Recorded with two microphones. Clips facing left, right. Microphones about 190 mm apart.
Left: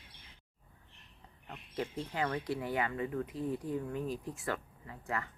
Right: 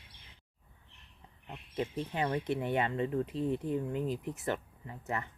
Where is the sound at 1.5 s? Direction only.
20° right (ahead or behind).